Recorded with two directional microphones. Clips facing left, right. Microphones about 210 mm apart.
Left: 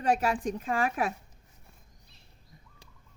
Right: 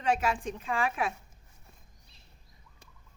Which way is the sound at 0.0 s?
35° left (ahead or behind).